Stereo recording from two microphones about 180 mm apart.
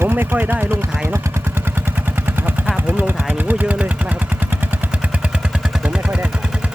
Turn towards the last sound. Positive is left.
turn(degrees=-5)  # may be behind; listen again after turning